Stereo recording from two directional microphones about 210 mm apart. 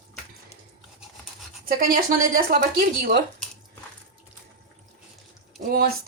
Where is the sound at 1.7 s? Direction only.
45° right (ahead or behind).